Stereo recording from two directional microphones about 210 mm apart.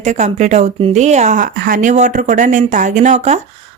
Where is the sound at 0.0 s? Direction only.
35° right (ahead or behind).